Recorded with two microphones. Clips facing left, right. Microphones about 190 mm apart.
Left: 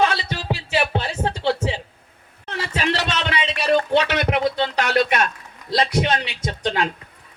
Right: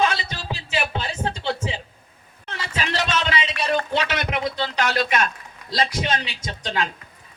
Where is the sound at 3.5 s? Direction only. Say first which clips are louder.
Left 8 dB; 30° left (ahead or behind).